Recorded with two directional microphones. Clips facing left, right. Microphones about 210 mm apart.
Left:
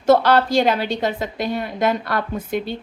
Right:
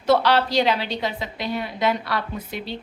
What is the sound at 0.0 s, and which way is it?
A woman's voice, 50° left (ahead or behind).